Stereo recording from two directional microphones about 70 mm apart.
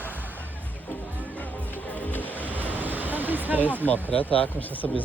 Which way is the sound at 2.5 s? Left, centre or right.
Right.